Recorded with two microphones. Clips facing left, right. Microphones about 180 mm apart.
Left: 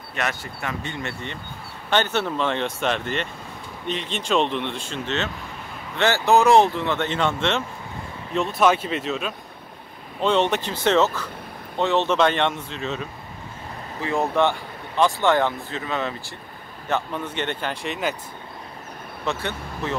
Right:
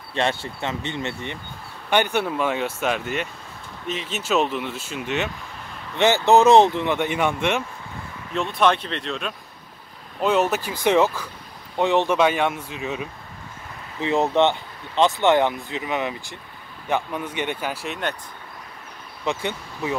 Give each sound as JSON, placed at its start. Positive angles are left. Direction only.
{"t": 0.1, "sound": "speech", "side_deg": -30}
{"t": 8.4, "sound": "speech", "side_deg": 5}
{"t": 10.2, "sound": "speech", "side_deg": -5}
{"t": 19.2, "sound": "speech", "side_deg": -15}